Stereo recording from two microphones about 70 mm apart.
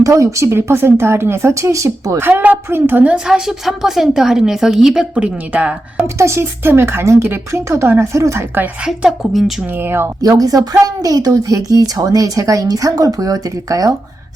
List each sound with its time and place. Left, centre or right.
0.0 s a woman's voice: right
2.6 s a woman's voice: right
3.2 s a woman's voice: centre
6.1 s a woman's voice: right
8.8 s a woman's voice: centre
9.7 s a woman's voice: right
10.2 s speech: right